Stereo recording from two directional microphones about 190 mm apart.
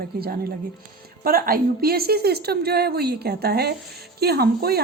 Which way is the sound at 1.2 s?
50° right (ahead or behind).